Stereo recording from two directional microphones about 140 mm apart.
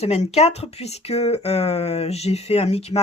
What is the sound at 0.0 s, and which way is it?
Speech, 50° left (ahead or behind).